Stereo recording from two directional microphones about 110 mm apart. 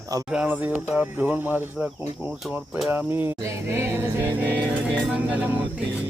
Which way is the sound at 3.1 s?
20° right (ahead or behind).